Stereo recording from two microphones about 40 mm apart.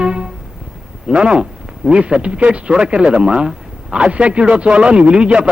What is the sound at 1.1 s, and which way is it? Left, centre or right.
A man's voice, right.